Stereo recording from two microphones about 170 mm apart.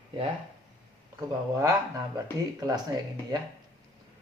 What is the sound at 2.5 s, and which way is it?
Speech, 20° right (ahead or behind).